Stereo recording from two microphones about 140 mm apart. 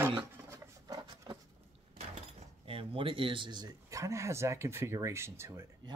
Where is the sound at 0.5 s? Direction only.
25° right (ahead or behind).